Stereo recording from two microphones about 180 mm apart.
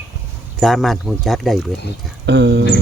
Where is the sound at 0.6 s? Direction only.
Centre (ahead or behind).